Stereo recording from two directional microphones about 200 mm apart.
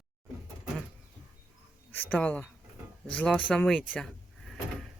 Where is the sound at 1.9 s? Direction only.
10° left (ahead or behind).